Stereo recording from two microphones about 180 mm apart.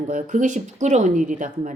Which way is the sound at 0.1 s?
45° right (ahead or behind).